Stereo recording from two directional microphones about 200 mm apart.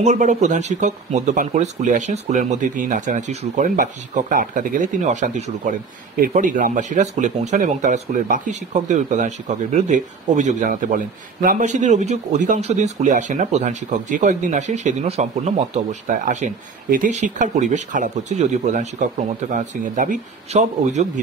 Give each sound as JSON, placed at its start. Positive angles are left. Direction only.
{"t": 0.0, "sound": "speech", "side_deg": -35}